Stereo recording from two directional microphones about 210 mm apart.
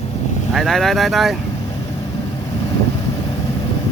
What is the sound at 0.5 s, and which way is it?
Speech, centre (ahead or behind).